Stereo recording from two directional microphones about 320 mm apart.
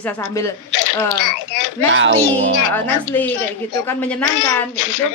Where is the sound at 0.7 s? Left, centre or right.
Left.